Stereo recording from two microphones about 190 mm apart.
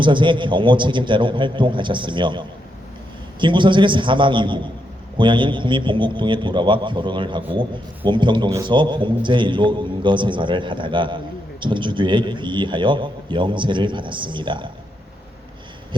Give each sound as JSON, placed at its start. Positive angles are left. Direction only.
{"t": 0.0, "sound": "a man's voice", "side_deg": -25}
{"t": 3.4, "sound": "a man's voice", "side_deg": -25}